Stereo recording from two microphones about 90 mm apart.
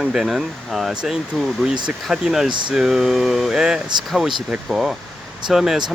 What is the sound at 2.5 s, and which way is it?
Speech, 60° right (ahead or behind).